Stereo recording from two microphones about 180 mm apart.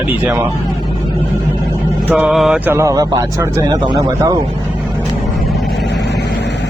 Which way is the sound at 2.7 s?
20° right (ahead or behind).